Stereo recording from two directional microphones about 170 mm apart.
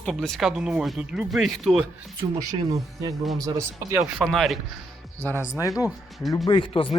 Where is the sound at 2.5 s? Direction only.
20° right (ahead or behind).